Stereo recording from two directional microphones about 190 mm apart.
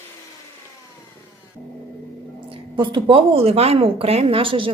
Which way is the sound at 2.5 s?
25° right (ahead or behind).